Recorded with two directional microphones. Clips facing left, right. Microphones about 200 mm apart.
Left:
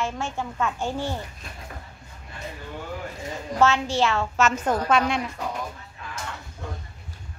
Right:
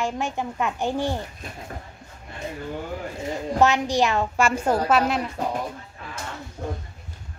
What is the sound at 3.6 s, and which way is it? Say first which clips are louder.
A child's voice: right 1 dB; 15° right (ahead or behind).